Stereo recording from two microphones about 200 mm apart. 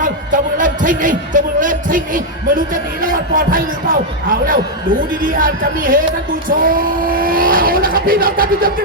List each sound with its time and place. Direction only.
0.0 s speech: 40° right (ahead or behind)